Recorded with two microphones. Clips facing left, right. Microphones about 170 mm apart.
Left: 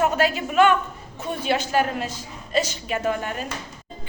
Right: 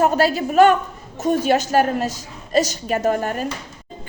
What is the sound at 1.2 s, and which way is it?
Music, 45° right (ahead or behind).